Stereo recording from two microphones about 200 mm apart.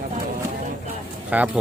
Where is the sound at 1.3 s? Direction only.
5° right (ahead or behind).